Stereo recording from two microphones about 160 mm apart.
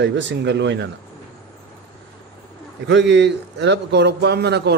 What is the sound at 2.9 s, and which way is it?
A man's voice, 90° right.